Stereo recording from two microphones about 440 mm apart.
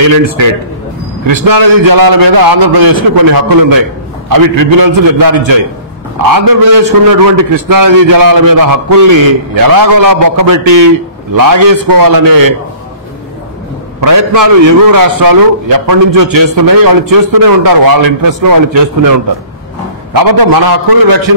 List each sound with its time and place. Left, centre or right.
0.0 s a man's voice: right
14.0 s a man's voice: right
20.2 s a man's voice: right